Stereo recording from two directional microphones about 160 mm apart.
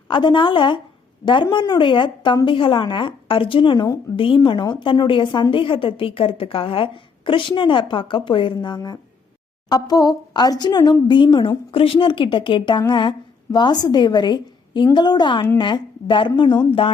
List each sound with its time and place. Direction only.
0.1 s a woman's voice: 30° left (ahead or behind)